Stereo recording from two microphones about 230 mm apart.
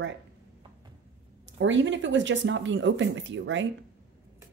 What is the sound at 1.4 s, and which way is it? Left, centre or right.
Speech, right.